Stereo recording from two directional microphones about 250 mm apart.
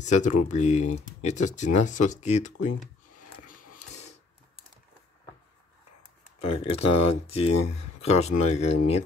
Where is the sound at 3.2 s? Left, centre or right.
Left.